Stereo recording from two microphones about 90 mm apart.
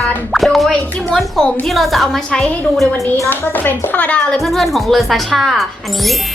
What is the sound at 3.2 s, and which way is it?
Speech, 20° left (ahead or behind).